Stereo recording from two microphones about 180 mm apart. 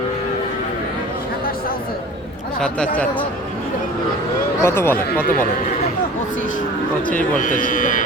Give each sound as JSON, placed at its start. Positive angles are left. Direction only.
{"t": 2.6, "sound": "speech", "side_deg": 5}
{"t": 4.6, "sound": "speech", "side_deg": 15}
{"t": 7.3, "sound": "speech", "side_deg": 45}